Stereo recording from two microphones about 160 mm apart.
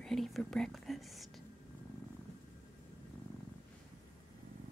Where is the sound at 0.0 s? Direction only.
Centre (ahead or behind).